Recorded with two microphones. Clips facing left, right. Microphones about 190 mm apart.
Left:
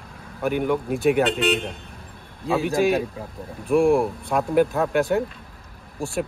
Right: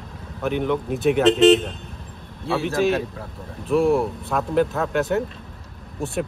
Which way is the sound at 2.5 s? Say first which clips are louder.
Left 1 dB; 15° left (ahead or behind).